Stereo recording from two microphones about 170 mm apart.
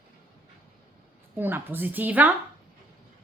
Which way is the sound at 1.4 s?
10° right (ahead or behind).